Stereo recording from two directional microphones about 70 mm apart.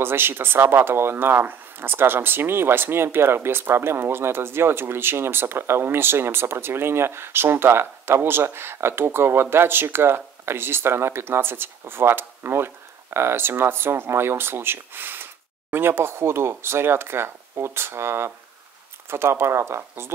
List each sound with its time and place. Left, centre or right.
0.0 s speech: right